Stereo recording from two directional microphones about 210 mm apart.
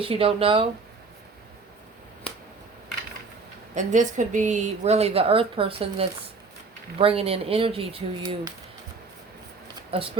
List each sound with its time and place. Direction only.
0.0 s speech: 25° right (ahead or behind)
3.8 s a woman's voice: 35° right (ahead or behind)
9.9 s speech: 25° right (ahead or behind)